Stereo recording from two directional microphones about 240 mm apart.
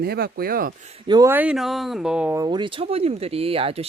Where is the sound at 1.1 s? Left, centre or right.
Centre.